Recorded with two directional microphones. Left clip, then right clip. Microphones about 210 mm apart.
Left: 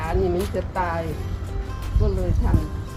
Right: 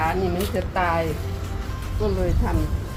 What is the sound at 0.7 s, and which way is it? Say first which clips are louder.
Speech: right 4 dB; 5° left (ahead or behind).